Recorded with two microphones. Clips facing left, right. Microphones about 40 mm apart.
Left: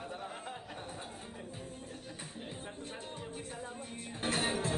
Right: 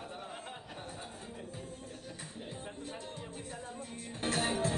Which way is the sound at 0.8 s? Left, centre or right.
Left.